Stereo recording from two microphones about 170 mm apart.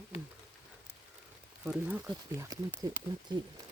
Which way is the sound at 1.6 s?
10° right (ahead or behind).